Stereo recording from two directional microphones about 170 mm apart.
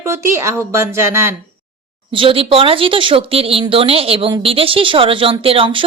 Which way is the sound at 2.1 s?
30° right (ahead or behind).